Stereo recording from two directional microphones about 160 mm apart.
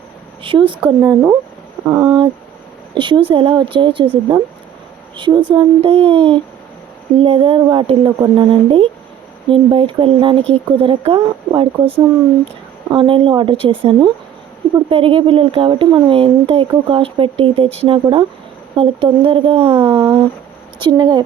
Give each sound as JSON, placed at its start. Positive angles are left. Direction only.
{"t": 0.4, "sound": "speech", "side_deg": -35}
{"t": 0.9, "sound": "speech", "side_deg": -20}
{"t": 5.5, "sound": "speech", "side_deg": -35}